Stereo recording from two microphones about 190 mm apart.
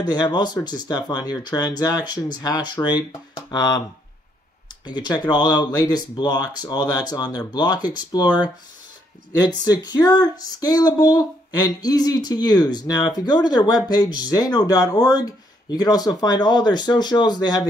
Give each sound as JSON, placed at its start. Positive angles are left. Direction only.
{"t": 0.0, "sound": "speech", "side_deg": 20}
{"t": 4.8, "sound": "speech", "side_deg": 20}